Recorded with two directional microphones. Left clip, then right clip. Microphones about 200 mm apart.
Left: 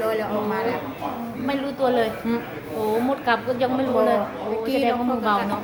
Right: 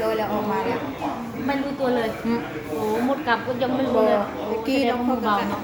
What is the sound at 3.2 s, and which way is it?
A woman's voice, 35° left (ahead or behind).